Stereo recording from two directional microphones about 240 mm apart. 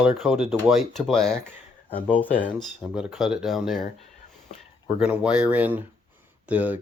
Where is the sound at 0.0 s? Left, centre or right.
Centre.